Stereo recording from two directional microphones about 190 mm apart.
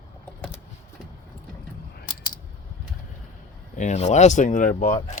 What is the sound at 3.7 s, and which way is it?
Speech, 40° left (ahead or behind).